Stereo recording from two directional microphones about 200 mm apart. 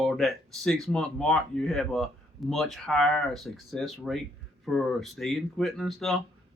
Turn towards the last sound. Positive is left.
turn(degrees=0)  # may be behind; listen again after turning